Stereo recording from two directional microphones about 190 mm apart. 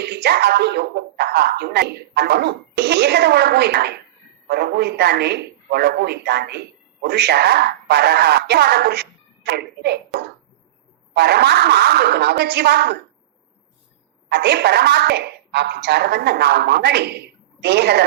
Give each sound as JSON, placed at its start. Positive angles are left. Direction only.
{"t": 0.0, "sound": "speech", "side_deg": -60}
{"t": 11.1, "sound": "speech", "side_deg": -60}
{"t": 14.3, "sound": "speech", "side_deg": -60}